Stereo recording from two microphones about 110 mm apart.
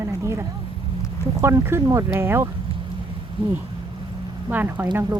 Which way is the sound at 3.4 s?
55° right (ahead or behind).